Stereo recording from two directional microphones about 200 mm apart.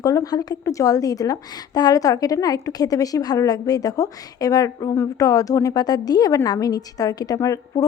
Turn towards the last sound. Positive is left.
turn(degrees=15)  # may be behind; listen again after turning